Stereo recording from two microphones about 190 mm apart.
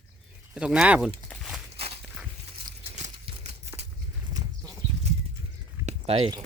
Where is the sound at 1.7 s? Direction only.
30° right (ahead or behind).